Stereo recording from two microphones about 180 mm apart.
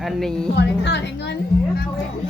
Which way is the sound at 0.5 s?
70° left (ahead or behind).